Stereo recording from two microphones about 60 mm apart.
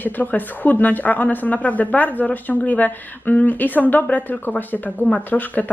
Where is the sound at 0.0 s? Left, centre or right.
Left.